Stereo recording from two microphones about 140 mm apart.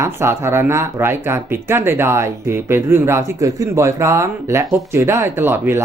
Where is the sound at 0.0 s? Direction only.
20° right (ahead or behind).